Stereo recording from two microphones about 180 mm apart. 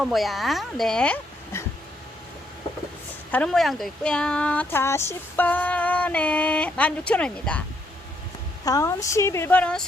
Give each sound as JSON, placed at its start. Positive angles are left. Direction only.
{"t": 0.0, "sound": "speech", "side_deg": 0}
{"t": 3.3, "sound": "speech", "side_deg": 5}
{"t": 8.6, "sound": "speech", "side_deg": 20}